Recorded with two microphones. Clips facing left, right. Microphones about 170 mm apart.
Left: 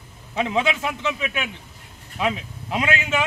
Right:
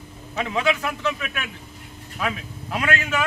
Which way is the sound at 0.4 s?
25° left (ahead or behind).